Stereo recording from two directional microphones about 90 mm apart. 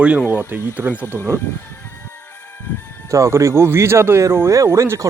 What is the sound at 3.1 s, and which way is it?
Speech, 35° right (ahead or behind).